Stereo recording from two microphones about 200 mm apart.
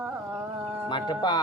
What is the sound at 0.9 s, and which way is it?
Speech, 20° left (ahead or behind).